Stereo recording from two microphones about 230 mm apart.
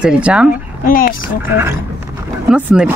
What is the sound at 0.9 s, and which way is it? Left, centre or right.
Speech, left.